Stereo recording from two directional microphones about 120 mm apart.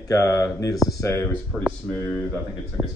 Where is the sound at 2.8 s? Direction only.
15° right (ahead or behind).